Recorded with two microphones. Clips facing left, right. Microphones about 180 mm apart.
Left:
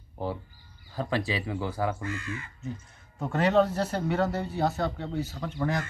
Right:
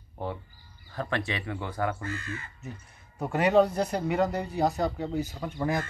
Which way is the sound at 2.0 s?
35° right (ahead or behind).